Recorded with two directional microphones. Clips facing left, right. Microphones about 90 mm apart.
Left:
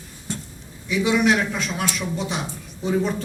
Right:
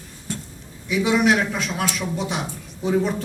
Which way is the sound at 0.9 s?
5° right (ahead or behind).